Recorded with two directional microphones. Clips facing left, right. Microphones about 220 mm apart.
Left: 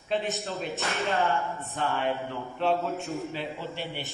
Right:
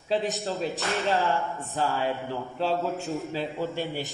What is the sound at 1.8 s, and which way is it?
Speech, 30° right (ahead or behind).